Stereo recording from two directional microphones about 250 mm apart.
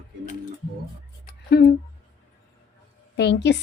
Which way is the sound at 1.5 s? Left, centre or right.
Left.